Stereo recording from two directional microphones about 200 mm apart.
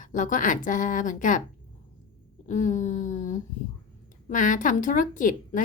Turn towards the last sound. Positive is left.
turn(degrees=40)  # may be behind; listen again after turning